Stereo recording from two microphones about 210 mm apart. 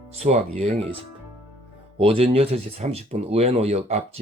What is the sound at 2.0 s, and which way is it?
Speech, 25° right (ahead or behind).